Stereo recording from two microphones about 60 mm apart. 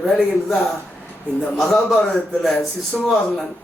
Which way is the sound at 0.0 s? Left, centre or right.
Centre.